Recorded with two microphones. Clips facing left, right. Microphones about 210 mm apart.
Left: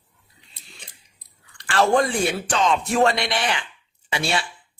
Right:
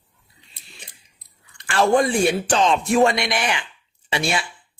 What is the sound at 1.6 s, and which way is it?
Speech, 20° right (ahead or behind).